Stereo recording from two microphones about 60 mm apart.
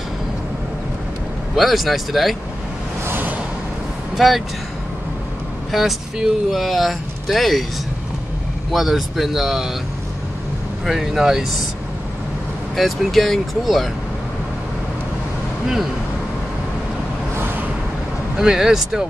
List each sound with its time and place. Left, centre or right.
1.5 s speech: centre
3.1 s a sound: right
4.2 s speech: centre
5.7 s speech: centre
8.7 s speech: centre
10.9 s speech: centre
12.7 s speech: centre
15.6 s speech: centre
17.4 s vehicle: right
18.3 s speech: centre